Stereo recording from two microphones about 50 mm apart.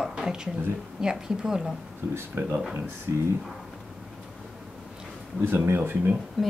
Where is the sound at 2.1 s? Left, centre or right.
Right.